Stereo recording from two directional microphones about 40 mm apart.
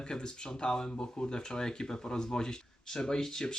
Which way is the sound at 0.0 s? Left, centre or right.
Left.